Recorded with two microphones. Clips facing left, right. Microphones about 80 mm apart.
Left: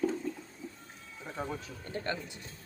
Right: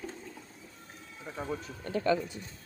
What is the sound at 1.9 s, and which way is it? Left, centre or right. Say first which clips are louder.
Speech: right 6 dB; right.